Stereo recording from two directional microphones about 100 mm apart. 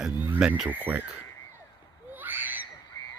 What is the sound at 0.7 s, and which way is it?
Speech, 20° right (ahead or behind).